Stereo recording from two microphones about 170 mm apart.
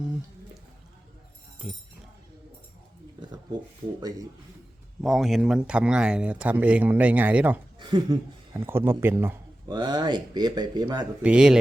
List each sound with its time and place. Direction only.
5.0 s speech: centre (ahead or behind)
7.8 s speech: 30° right (ahead or behind)
8.5 s speech: 15° right (ahead or behind)
9.6 s speech: 25° right (ahead or behind)
11.2 s speech: 5° right (ahead or behind)